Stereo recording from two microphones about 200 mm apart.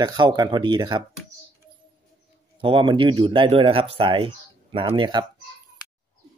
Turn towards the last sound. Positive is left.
turn(degrees=-20)  # may be behind; listen again after turning